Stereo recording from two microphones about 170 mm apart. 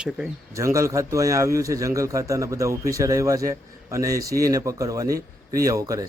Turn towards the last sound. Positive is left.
turn(degrees=-20)  # may be behind; listen again after turning